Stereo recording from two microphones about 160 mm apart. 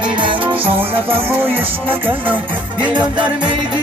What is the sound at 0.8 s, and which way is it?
Music, 15° right (ahead or behind).